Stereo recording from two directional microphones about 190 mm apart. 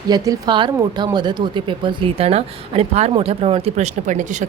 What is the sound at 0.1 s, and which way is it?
Speech, 20° right (ahead or behind).